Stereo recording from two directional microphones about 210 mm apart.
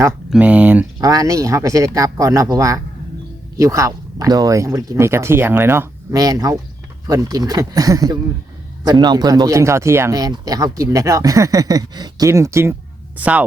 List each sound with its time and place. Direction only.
0.3 s speech: 5° right (ahead or behind)